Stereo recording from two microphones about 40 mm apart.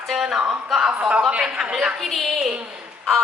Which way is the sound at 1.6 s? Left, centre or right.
Centre.